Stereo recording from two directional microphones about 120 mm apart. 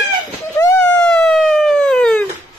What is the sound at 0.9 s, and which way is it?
Emergency vehicle, 10° left (ahead or behind).